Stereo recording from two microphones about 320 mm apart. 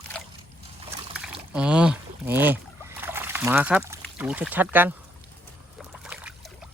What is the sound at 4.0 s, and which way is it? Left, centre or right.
Speech, centre.